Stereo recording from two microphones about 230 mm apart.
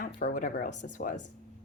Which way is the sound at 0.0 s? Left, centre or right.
Left.